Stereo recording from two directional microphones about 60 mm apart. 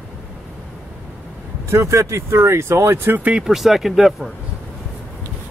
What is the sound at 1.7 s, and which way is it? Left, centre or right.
Speech, right.